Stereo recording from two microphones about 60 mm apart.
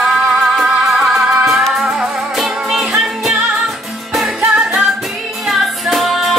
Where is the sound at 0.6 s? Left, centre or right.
Centre.